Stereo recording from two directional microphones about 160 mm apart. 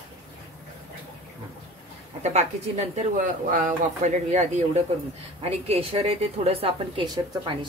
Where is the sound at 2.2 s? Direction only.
45° right (ahead or behind).